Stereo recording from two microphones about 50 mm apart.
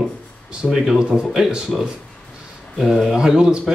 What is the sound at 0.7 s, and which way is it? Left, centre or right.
Speech, centre.